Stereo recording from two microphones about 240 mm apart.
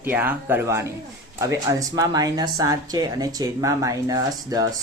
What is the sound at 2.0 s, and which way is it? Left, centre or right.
Speech, centre.